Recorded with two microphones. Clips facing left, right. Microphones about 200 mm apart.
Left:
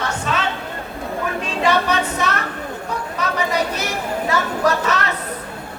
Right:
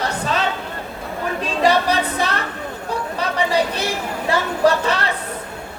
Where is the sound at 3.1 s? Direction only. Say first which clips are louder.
Right 1 dB; 30° right (ahead or behind).